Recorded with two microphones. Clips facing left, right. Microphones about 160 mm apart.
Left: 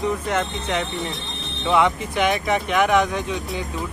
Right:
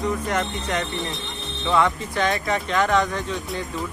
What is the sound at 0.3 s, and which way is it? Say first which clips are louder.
Speech: left 1 dB; 15° left (ahead or behind).